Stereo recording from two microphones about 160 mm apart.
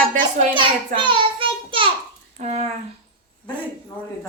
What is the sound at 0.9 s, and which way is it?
Child singing, 30° right (ahead or behind).